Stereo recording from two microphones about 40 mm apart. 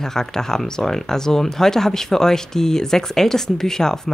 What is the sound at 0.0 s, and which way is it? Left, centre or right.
Speech, centre.